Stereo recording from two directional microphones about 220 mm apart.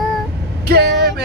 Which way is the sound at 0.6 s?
45° right (ahead or behind).